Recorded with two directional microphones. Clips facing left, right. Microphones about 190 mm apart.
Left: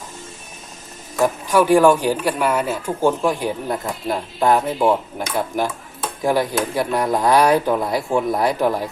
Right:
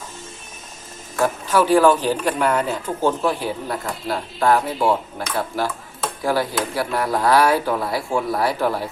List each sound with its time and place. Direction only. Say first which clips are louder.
1.2 s speech: left 2 dB; 15° left (ahead or behind)